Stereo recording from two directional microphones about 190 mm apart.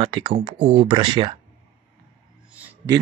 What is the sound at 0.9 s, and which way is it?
Speech, 25° right (ahead or behind).